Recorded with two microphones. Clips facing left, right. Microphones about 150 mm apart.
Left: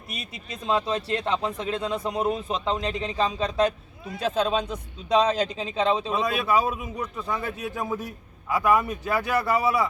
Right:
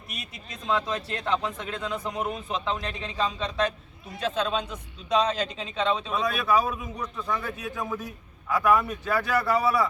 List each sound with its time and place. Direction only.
0.2 s speech: 30° left (ahead or behind)
7.0 s a man's voice: 5° left (ahead or behind)
7.6 s a man's voice: 25° left (ahead or behind)